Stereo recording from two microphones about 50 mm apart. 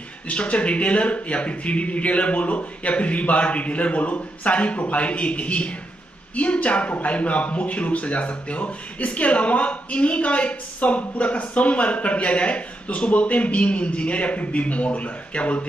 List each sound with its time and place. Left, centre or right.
0.3 s speech: left